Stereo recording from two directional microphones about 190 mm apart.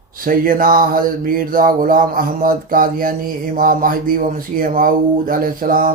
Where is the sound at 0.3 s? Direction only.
50° right (ahead or behind).